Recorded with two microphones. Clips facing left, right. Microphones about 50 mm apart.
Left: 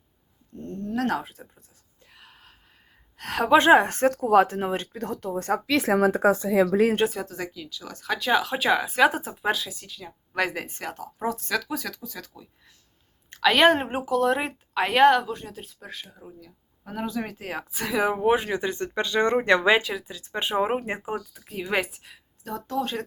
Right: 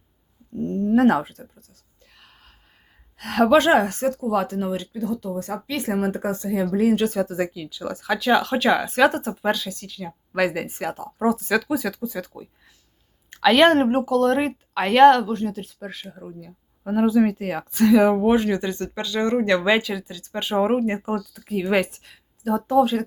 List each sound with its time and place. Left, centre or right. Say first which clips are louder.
0.5 s a sound: right 10 dB; right
1.2 s speech: right 6 dB; centre
2.1 s gasp: left 1 dB; centre
3.2 s a woman's voice: right 7 dB; centre
3.5 s a woman's voice: left 1 dB; left
3.9 s speech: left 3 dB; left
5.9 s speech: left 2 dB; left
7.3 s speech: right 8 dB; centre
8.0 s speech: right 4 dB; centre
13.3 s speech: right 3 dB; centre
16.1 s speech: right 7 dB; centre
17.3 s speech: right 7 dB; centre; by 19.6 s left
19.6 s speech: right 1 dB; centre
22.4 s speech: right 10 dB; centre